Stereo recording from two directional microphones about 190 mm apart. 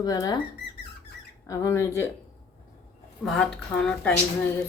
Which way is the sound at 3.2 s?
5° left (ahead or behind).